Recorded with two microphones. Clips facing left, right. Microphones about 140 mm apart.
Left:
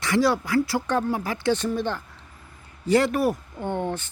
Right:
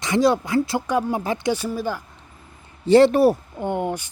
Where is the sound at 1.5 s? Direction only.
5° right (ahead or behind).